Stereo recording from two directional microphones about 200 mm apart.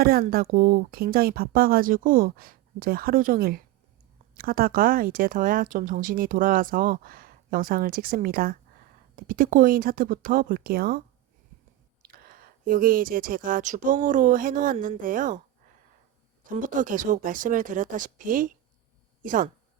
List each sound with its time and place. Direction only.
0.0 s speech: 50° right (ahead or behind)
12.0 s speech: 45° right (ahead or behind)
16.5 s speech: 40° right (ahead or behind)